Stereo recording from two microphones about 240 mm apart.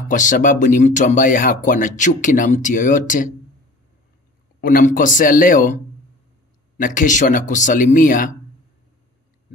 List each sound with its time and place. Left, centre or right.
0.1 s speech: left
4.6 s speech: left
6.8 s speech: left